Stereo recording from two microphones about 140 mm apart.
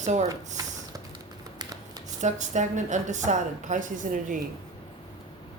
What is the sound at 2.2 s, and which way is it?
A woman's voice, 60° right (ahead or behind).